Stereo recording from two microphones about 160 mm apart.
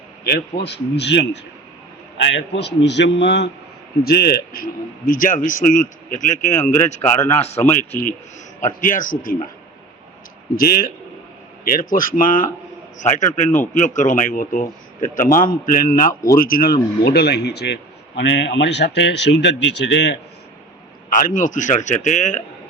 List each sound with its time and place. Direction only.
0.3 s speech: 85° left
2.6 s speech: 90° left
4.0 s a man's voice: 75° left (ahead or behind); by 7.0 s 50° left (ahead or behind)
7.0 s a man's voice: 20° left (ahead or behind)
7.3 s a man's voice: 40° left (ahead or behind)
8.6 s a man's voice: 55° left (ahead or behind)
10.6 s a man's voice: 65° left (ahead or behind)
17.0 s speech: 90° left
21.1 s a man's voice: 55° left (ahead or behind)